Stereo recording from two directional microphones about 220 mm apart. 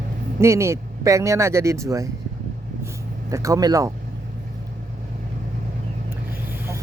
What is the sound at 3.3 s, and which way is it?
Speech, 15° right (ahead or behind).